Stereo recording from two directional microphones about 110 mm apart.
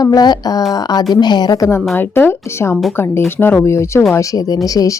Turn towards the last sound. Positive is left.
turn(degrees=30)  # may be behind; listen again after turning